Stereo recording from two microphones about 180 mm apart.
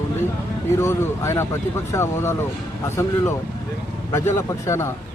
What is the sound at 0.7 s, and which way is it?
A man's voice, 15° left (ahead or behind).